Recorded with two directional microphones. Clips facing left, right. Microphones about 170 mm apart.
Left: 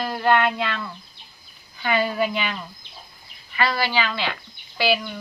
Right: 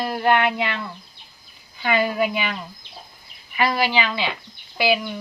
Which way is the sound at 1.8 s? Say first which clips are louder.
Right 1 dB; 15° right (ahead or behind).